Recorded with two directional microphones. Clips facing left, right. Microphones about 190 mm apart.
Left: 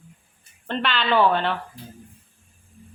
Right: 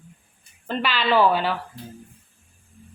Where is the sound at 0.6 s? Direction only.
5° right (ahead or behind).